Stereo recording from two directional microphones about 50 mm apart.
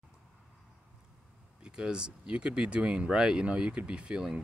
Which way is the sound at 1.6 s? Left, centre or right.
Centre.